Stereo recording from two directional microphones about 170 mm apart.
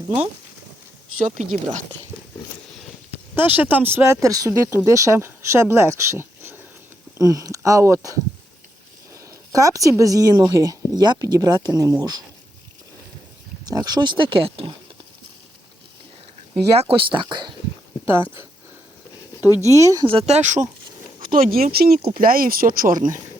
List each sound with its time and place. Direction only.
1.2 s speech: 45° right (ahead or behind)
3.3 s speech: 10° right (ahead or behind)
9.5 s speech: 20° right (ahead or behind)
13.7 s speech: 25° right (ahead or behind)
16.9 s speech: 30° right (ahead or behind)
19.7 s speech: 20° right (ahead or behind)
20.1 s speech: 35° right (ahead or behind)
21.2 s speech: 55° right (ahead or behind)